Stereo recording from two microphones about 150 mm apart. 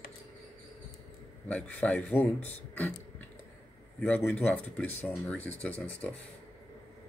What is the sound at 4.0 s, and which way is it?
Speech, 10° left (ahead or behind).